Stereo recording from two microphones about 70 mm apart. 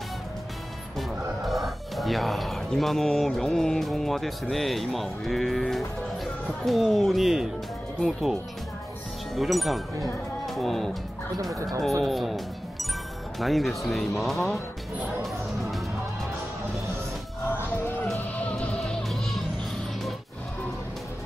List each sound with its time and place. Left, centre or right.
0.9 s speech: centre
12.0 s speech: centre
13.4 s speech: centre
18.3 s music: centre
19.0 s music: centre